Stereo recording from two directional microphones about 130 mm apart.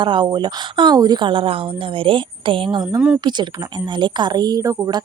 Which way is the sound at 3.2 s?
35° right (ahead or behind).